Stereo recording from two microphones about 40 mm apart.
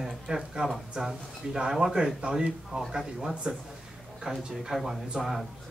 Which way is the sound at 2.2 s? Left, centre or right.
Right.